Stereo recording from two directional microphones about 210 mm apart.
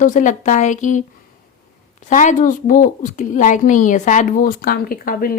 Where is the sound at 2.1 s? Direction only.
35° left (ahead or behind).